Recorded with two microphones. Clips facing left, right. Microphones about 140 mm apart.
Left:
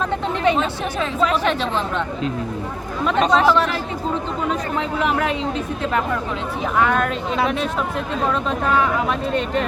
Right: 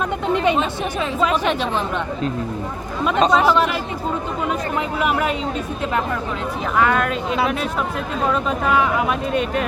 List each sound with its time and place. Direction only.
0.1 s speech: 15° right (ahead or behind)
3.1 s speech: 15° right (ahead or behind)
6.7 s speech: centre (ahead or behind)